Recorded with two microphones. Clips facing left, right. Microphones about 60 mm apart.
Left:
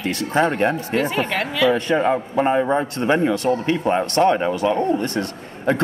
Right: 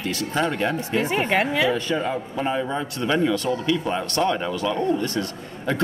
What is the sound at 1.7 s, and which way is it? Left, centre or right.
Speech, left.